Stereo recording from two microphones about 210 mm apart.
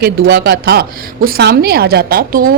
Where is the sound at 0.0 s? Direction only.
45° right (ahead or behind).